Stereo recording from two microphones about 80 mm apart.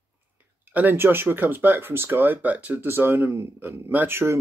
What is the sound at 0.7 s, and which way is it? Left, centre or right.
Speech, right.